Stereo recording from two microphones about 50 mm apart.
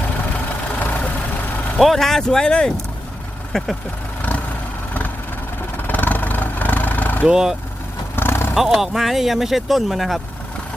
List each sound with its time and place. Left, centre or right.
0.8 s vehicle: left
1.8 s speech: centre
4.2 s vehicle: left
5.7 s vehicle: left
7.3 s speech: centre
8.1 s vehicle: left
8.5 s speech: centre